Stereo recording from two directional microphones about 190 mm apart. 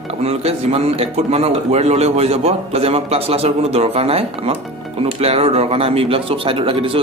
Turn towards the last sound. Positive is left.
turn(degrees=-30)  # may be behind; listen again after turning